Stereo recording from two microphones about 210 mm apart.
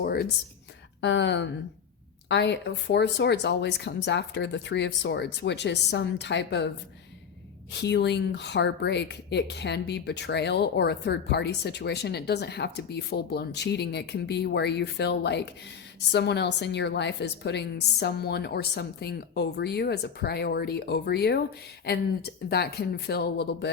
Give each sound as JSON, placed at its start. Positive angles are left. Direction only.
{"t": 0.0, "sound": "a sound", "side_deg": 45}
{"t": 1.0, "sound": "speech", "side_deg": 60}
{"t": 7.7, "sound": "speech", "side_deg": 55}